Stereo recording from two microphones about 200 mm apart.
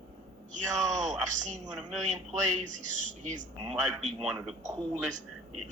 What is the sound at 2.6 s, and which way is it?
Speech, 40° right (ahead or behind).